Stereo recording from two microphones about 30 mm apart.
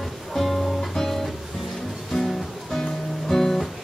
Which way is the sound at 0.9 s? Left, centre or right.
Centre.